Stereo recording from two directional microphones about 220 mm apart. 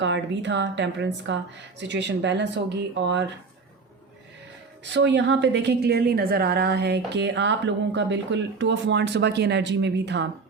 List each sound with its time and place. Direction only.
0.0 s a woman's voice: 55° right (ahead or behind)
4.9 s a woman's voice: 55° right (ahead or behind)